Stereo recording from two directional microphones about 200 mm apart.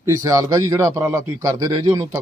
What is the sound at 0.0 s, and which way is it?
A man's voice, 15° right (ahead or behind).